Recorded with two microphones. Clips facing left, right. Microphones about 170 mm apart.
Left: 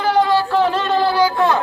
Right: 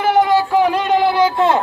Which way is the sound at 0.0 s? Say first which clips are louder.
Right 2 dB; 20° right (ahead or behind).